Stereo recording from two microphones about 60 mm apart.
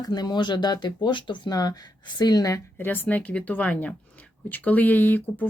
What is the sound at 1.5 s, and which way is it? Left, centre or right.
Speech, left.